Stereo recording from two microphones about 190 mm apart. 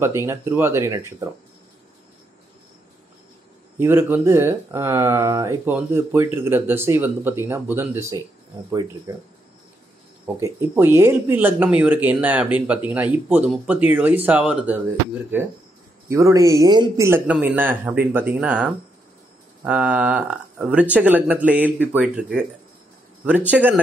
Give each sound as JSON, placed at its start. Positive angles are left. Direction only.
{"t": 0.0, "sound": "speech", "side_deg": -15}
{"t": 3.7, "sound": "speech", "side_deg": -10}